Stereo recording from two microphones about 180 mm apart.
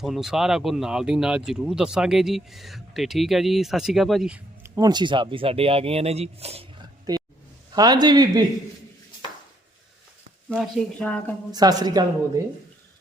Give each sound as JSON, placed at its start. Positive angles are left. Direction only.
{"t": 0.0, "sound": "speech", "side_deg": 0}
{"t": 4.6, "sound": "a man's voice", "side_deg": -15}
{"t": 10.5, "sound": "speech", "side_deg": 5}
{"t": 11.5, "sound": "a man's voice", "side_deg": -20}